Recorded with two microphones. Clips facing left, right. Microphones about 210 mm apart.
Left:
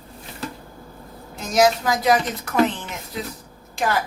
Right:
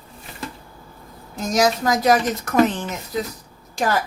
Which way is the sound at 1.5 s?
40° right (ahead or behind).